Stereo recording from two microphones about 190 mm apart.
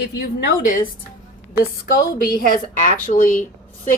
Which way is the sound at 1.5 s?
50° left (ahead or behind).